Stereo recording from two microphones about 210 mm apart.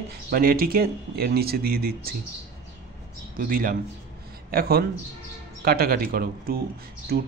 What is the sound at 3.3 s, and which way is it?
A man's voice, 45° right (ahead or behind).